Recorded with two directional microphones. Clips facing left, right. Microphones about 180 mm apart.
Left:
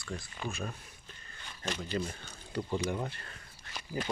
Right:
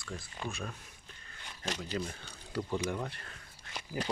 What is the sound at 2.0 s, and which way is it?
Speech, 5° left (ahead or behind).